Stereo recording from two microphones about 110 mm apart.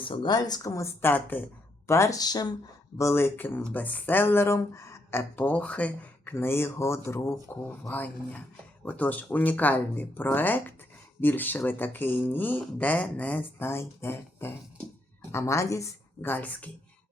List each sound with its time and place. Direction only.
0.0 s speech: 50° left (ahead or behind); by 0.9 s 30° left (ahead or behind)
1.0 s speech: 15° left (ahead or behind)
1.9 s speech: 30° left (ahead or behind)
3.0 s speech: 25° left (ahead or behind)
16.2 s speech: 15° left (ahead or behind)